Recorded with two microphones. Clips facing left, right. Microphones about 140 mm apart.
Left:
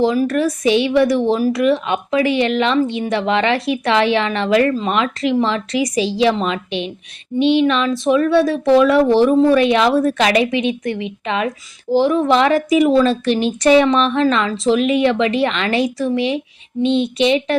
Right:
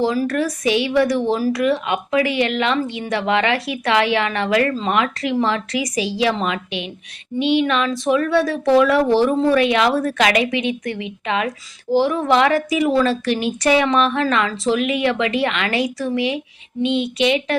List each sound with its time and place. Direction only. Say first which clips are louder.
0.0 s a woman's voice: left 3 dB; 20° left (ahead or behind)
16.8 s speech: left 3 dB; 15° right (ahead or behind)
17.2 s a woman's voice: left 3 dB; 25° left (ahead or behind)